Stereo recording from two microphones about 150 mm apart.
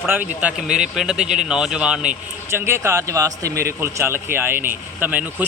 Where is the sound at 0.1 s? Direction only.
10° right (ahead or behind).